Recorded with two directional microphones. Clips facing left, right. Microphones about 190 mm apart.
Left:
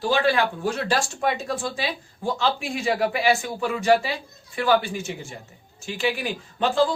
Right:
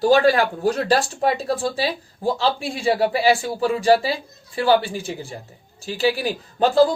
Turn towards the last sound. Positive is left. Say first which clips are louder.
# right 5 dB
turn(degrees=-40)  # may be behind; listen again after turning